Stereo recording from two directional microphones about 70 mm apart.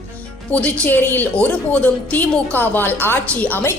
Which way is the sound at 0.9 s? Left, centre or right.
Left.